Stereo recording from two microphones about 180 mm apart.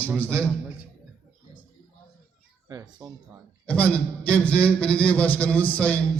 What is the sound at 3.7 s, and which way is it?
A man's voice, 10° left (ahead or behind).